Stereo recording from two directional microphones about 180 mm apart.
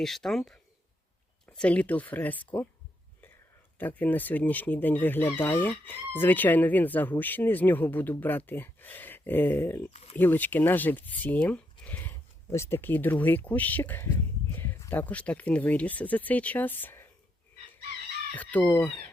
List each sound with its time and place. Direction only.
0.0 s speech: centre (ahead or behind)
3.8 s speech: 10° left (ahead or behind)
9.9 s speech: 35° left (ahead or behind)
10.2 s speech: 10° left (ahead or behind)
18.3 s speech: 10° left (ahead or behind)